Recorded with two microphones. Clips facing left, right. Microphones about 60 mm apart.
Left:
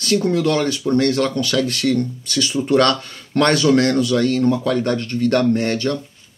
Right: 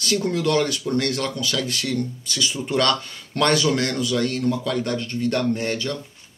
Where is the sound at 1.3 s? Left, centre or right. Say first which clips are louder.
Left 6 dB; left.